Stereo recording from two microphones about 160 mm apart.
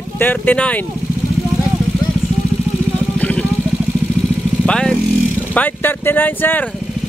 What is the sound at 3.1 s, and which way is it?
Vehicle, 10° left (ahead or behind).